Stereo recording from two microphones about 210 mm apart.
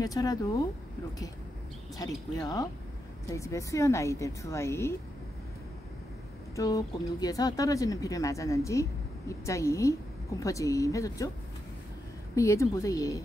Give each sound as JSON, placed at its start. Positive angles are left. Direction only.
{"t": 0.0, "sound": "speech", "side_deg": 15}
{"t": 2.3, "sound": "speech", "side_deg": 15}
{"t": 6.5, "sound": "speech", "side_deg": 15}
{"t": 12.4, "sound": "speech", "side_deg": 15}